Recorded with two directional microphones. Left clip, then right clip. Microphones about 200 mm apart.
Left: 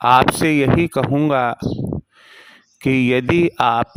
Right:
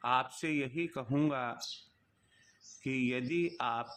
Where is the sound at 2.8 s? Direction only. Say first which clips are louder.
Left 18 dB; 55° left (ahead or behind).